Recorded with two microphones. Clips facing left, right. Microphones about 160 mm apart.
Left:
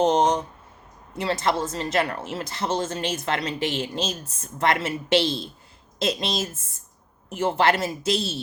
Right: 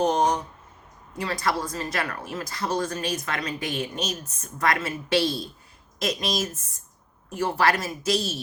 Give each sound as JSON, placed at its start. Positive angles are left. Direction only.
{"t": 0.0, "sound": "speech", "side_deg": 25}